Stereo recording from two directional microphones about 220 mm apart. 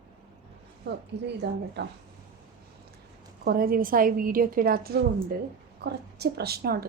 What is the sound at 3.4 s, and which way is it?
A woman's voice, 40° right (ahead or behind).